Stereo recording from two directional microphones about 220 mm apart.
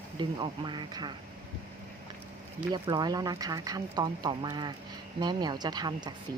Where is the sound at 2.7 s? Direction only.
20° right (ahead or behind).